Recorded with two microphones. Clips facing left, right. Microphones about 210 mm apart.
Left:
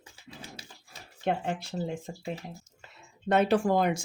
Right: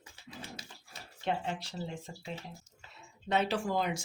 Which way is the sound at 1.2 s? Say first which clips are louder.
Left 5 dB; 50° left (ahead or behind).